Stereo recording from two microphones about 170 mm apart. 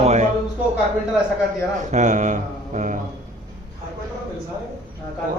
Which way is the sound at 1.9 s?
45° right (ahead or behind).